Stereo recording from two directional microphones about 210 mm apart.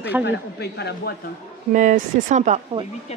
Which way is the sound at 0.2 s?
55° left (ahead or behind).